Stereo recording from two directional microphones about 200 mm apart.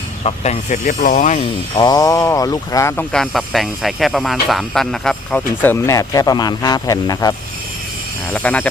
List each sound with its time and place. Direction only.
0.3 s speech: 30° left (ahead or behind)
1.7 s speech: 20° left (ahead or behind)
8.3 s speech: 5° left (ahead or behind)